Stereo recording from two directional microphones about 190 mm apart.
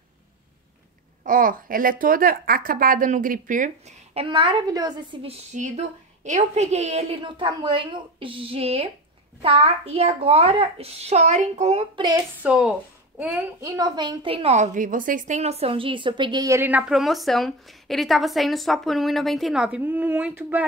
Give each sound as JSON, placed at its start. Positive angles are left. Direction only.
{"t": 1.2, "sound": "speech", "side_deg": -45}
{"t": 5.5, "sound": "a woman's voice", "side_deg": -40}
{"t": 11.9, "sound": "a woman's voice", "side_deg": -25}
{"t": 12.4, "sound": "a woman's voice", "side_deg": -5}